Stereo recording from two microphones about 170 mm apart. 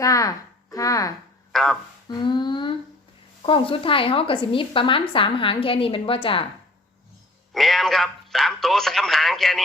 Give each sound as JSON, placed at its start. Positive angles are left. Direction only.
{"t": 0.0, "sound": "speech", "side_deg": 20}
{"t": 1.5, "sound": "speech", "side_deg": 0}
{"t": 2.0, "sound": "a sound", "side_deg": 25}
{"t": 3.4, "sound": "a woman's voice", "side_deg": 30}
{"t": 7.5, "sound": "a man's voice", "side_deg": 0}